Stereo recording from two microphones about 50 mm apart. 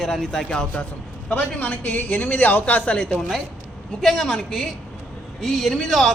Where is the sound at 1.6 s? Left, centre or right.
Left.